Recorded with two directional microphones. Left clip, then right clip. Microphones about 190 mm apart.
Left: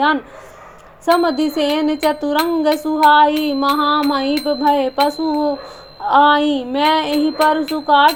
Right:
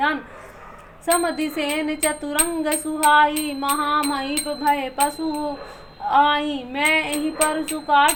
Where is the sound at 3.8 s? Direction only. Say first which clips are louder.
Left 6 dB; 30° left (ahead or behind).